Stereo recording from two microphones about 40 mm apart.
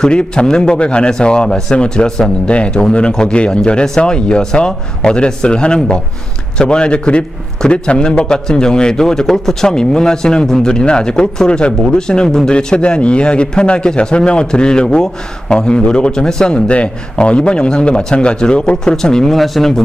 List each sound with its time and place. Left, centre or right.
0.0 s a man's voice: left
19.3 s speech: centre